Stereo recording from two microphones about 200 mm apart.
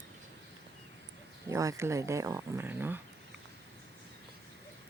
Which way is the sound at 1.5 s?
15° right (ahead or behind).